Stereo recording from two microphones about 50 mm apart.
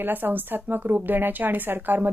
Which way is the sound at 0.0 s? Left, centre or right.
Right.